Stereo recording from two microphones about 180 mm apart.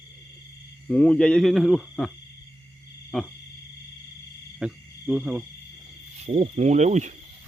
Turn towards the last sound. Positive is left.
turn(degrees=-40)  # may be behind; listen again after turning